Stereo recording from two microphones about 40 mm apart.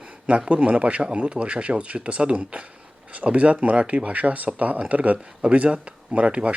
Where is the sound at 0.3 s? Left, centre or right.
Right.